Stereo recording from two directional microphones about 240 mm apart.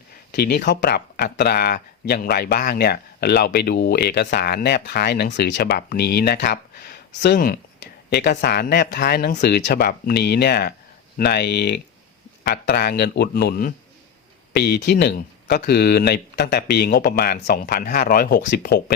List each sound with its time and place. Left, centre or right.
0.3 s speech: left